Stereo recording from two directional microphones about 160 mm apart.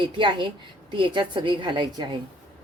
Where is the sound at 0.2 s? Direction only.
30° right (ahead or behind).